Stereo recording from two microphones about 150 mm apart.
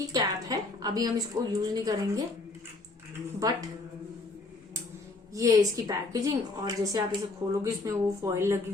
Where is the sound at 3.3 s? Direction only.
25° right (ahead or behind).